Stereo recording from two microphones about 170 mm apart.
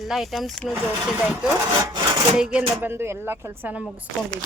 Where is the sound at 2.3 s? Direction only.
5° right (ahead or behind).